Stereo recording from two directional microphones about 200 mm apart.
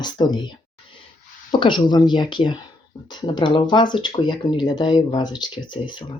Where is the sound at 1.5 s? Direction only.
25° left (ahead or behind).